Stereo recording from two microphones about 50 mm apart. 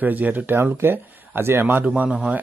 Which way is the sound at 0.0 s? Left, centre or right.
Right.